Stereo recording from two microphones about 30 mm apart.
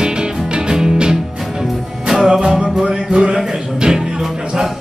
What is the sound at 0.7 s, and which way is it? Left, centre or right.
Music, right.